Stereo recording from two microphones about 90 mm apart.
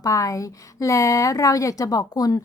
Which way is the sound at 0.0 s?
40° left (ahead or behind).